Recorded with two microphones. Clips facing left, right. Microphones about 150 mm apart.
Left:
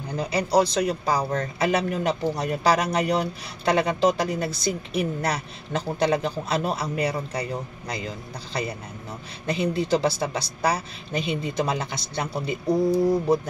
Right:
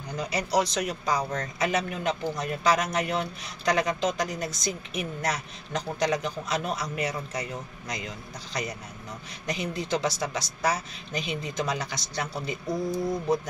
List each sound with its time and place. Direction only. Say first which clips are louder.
0.2 s speech: left 5 dB; 30° left (ahead or behind)
9.5 s a woman's voice: left 6 dB; 30° left (ahead or behind)